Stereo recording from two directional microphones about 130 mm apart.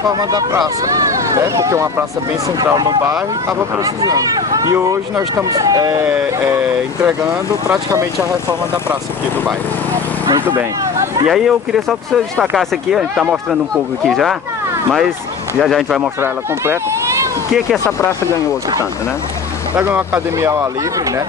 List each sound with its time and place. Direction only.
0.1 s speech: 30° right (ahead or behind)
7.6 s speech: 25° right (ahead or behind)
11.2 s speech: 5° right (ahead or behind)
14.0 s speech: centre (ahead or behind)
17.8 s speech: 20° left (ahead or behind)
19.8 s speech: 15° right (ahead or behind)